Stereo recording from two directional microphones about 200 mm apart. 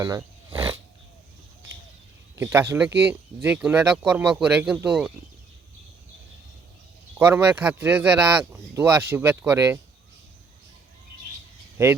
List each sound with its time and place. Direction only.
0.0 s wild animals: 15° right (ahead or behind)
2.3 s speech: 10° right (ahead or behind)
7.2 s speech: 10° right (ahead or behind)